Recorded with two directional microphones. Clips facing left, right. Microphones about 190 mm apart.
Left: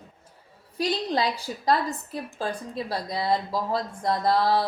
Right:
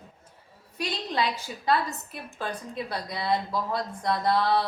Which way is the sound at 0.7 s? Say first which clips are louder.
Left 4 dB; 35° left (ahead or behind).